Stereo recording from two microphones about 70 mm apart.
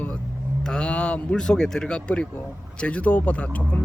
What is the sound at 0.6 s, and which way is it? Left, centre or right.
Speech, centre.